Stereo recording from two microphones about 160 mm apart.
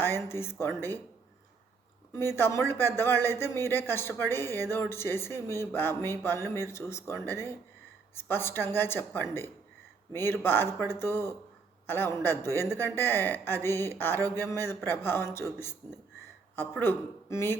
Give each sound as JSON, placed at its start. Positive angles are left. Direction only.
{"t": 0.0, "sound": "speech", "side_deg": 15}
{"t": 2.1, "sound": "a man's voice", "side_deg": 15}